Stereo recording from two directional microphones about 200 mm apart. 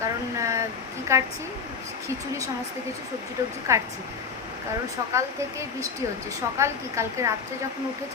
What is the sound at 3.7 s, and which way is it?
Speech, 15° right (ahead or behind).